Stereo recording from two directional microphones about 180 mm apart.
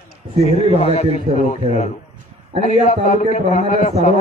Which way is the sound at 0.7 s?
35° left (ahead or behind).